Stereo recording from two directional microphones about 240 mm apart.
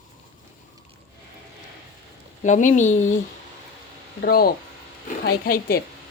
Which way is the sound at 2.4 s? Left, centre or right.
Left.